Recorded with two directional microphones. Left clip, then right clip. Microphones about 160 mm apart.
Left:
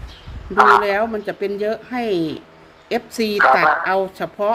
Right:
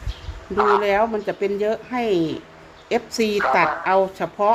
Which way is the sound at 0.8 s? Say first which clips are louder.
Left 1 dB; 15° left (ahead or behind).